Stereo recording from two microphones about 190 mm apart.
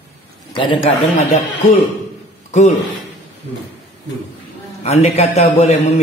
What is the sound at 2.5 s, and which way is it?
Speech, 40° left (ahead or behind).